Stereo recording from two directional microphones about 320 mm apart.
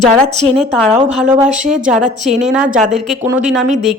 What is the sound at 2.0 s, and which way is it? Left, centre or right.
Speech, right.